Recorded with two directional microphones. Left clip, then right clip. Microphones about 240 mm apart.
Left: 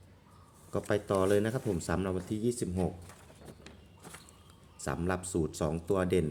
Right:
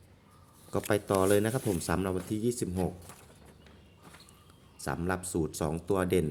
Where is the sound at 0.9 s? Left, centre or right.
Centre.